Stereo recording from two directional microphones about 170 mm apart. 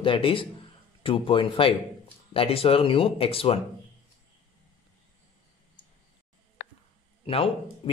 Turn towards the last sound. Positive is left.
turn(degrees=35)  # may be behind; listen again after turning